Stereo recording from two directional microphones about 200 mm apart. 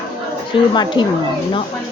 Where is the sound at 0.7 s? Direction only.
20° left (ahead or behind).